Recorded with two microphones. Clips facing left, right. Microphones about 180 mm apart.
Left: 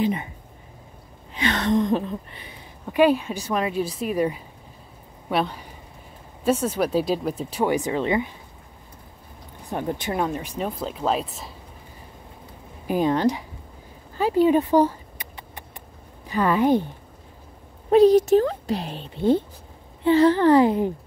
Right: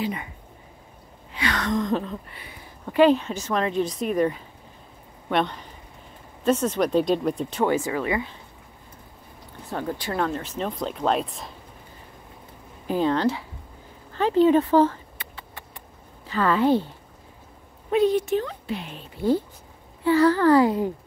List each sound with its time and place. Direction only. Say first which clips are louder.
0.0 s speech: left 5 dB; 25° left (ahead or behind)
1.4 s speech: left 4 dB; 25° left (ahead or behind)
9.7 s speech: left 2 dB; 20° left (ahead or behind); by 11.5 s 5° left (ahead or behind)
12.8 s speech: left 1 dB; 15° left (ahead or behind)
14.1 s a sound: even; 10° left (ahead or behind)
16.3 s speech: left 1 dB; 15° left (ahead or behind)
17.8 s a child's voice: left 6 dB; 40° left (ahead or behind); by 20.9 s 20° left (ahead or behind)